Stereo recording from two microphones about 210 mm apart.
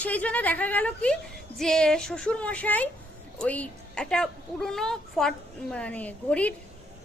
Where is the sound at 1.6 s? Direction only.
5° left (ahead or behind).